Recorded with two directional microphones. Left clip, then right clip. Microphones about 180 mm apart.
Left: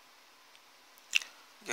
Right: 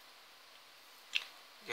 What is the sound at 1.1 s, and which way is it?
Chewing, 50° left (ahead or behind).